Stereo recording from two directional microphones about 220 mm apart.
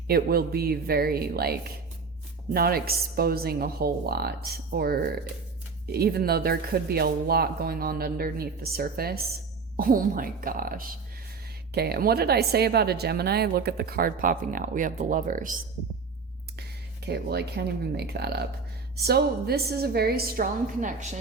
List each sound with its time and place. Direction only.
0.1 s speech: 45° right (ahead or behind)
17.1 s speech: 50° right (ahead or behind)